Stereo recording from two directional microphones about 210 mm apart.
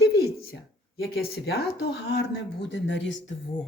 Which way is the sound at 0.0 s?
50° left (ahead or behind).